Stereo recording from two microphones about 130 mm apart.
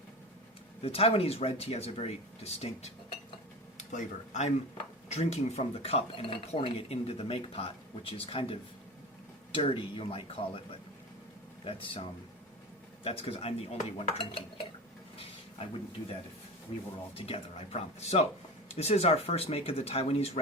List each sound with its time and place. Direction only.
0.8 s speech: 50° left (ahead or behind)
3.8 s speech: 65° left (ahead or behind); by 12.0 s 45° left (ahead or behind)
13.1 s speech: 50° left (ahead or behind)
17.2 s speech: 50° left (ahead or behind)